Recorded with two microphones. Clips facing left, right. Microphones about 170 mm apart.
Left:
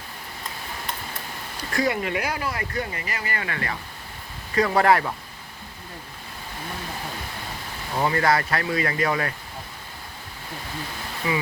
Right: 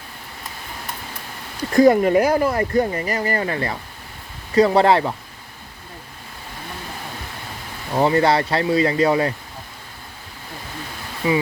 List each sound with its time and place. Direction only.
1.8 s speech: 45° right (ahead or behind); by 5.1 s 25° right (ahead or behind)
7.9 s speech: 30° right (ahead or behind)
11.2 s speech: 25° right (ahead or behind)